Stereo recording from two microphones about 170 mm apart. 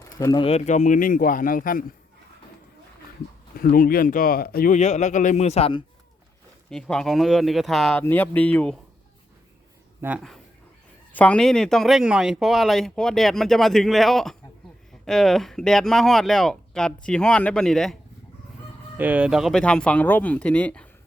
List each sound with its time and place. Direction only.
0.0 s a sound: 20° left (ahead or behind)
0.4 s speech: 40° left (ahead or behind)
3.6 s speech: 60° left (ahead or behind)
4.7 s speech: 45° left (ahead or behind)
6.7 s speech: 5° left (ahead or behind)
10.0 s speech: 10° right (ahead or behind)
11.1 s speech: 10° left (ahead or behind)
18.9 s speech: 10° right (ahead or behind); by 20.8 s 10° left (ahead or behind)